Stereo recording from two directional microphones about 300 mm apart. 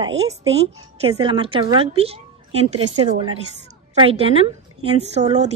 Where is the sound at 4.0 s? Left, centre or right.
Centre.